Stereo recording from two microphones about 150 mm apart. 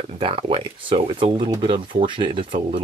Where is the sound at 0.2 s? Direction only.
35° right (ahead or behind).